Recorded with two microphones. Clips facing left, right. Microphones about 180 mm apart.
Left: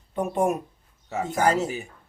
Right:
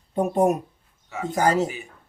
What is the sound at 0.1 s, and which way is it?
A man's voice, 35° right (ahead or behind).